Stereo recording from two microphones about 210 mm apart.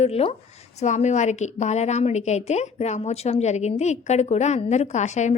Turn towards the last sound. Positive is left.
turn(degrees=35)  # may be behind; listen again after turning